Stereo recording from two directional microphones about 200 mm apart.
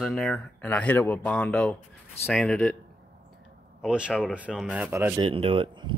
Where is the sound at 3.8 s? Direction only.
5° right (ahead or behind).